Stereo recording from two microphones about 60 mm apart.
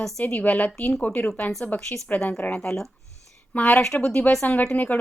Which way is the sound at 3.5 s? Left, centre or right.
Left.